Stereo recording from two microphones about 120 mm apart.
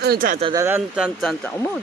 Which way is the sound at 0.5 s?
20° right (ahead or behind).